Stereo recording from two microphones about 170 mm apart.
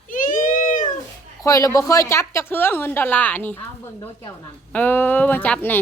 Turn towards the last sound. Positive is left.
turn(degrees=10)  # may be behind; listen again after turning